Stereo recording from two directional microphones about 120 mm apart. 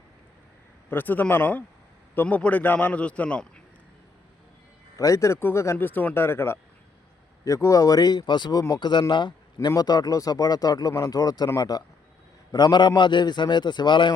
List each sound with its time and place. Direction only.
0.9 s a man's voice: 15° left (ahead or behind)
4.9 s a man's voice: 25° left (ahead or behind)